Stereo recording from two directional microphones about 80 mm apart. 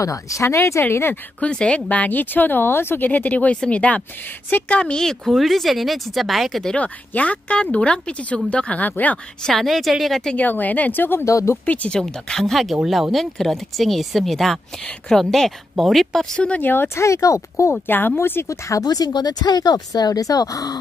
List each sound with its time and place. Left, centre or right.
0.0 s speech: left
1.4 s speech: centre
6.7 s speech: centre
9.4 s speech: centre
10.3 s speech: left
11.2 s speech: left
11.6 s speech: centre
16.3 s speech: centre; by 17.7 s left
17.7 s speech: left
18.7 s speech: left